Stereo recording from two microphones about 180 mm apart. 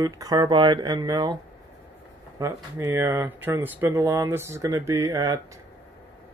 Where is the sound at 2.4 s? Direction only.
15° right (ahead or behind).